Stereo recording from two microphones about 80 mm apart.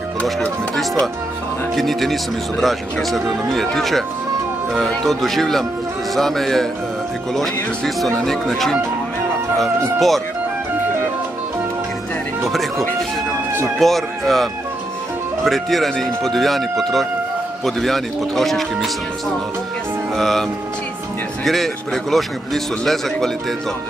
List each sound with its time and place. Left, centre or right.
1.8 s a man's voice: centre
13.7 s a man's voice: centre
20.2 s a man's voice: centre
21.5 s a man's voice: centre